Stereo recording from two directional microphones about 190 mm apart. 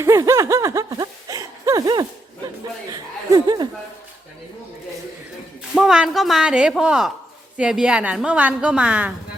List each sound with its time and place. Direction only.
0.0 s speech: 15° right (ahead or behind)
5.7 s a woman's voice: 5° right (ahead or behind)